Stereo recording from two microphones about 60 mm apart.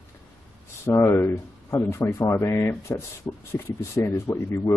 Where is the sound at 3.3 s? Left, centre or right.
Left.